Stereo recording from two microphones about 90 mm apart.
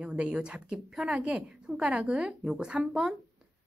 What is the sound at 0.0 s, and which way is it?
Speech, 10° right (ahead or behind).